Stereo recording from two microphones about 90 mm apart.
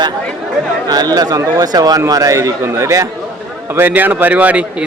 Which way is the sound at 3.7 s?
20° right (ahead or behind).